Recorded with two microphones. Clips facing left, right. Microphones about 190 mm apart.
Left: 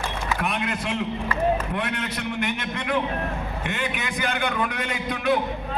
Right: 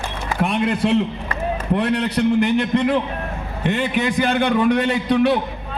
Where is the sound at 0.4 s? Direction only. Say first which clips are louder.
Right 12 dB; 30° right (ahead or behind).